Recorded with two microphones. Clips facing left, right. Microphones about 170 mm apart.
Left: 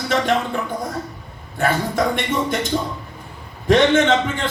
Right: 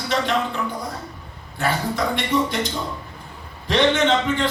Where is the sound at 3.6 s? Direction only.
50° left (ahead or behind).